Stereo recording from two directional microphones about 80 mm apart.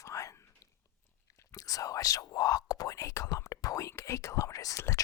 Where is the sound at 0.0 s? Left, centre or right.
Left.